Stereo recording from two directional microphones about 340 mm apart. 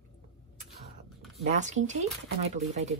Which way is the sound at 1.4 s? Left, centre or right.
Right.